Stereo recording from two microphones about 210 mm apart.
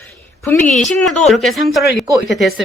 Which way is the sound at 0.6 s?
35° left (ahead or behind).